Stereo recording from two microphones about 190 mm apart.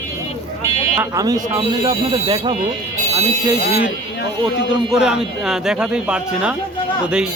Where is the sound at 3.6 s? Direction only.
60° left (ahead or behind).